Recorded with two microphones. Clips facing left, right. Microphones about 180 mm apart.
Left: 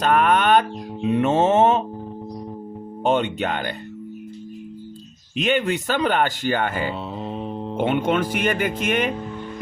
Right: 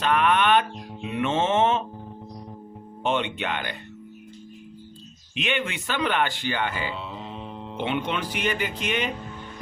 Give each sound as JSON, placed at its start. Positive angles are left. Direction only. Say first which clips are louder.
{"t": 0.0, "sound": "music", "louder": "left 4 dB", "side_deg": 45}
{"t": 1.0, "sound": "speech", "louder": "left 6 dB", "side_deg": 40}
{"t": 3.0, "sound": "speech", "louder": "left 5 dB", "side_deg": 40}
{"t": 5.4, "sound": "speech", "louder": "left 7 dB", "side_deg": 40}